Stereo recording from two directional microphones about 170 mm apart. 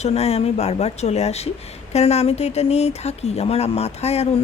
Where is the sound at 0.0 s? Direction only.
40° left (ahead or behind).